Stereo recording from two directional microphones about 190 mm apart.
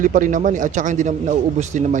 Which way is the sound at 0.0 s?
45° right (ahead or behind).